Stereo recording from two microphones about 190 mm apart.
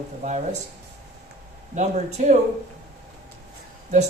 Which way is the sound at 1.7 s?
40° right (ahead or behind).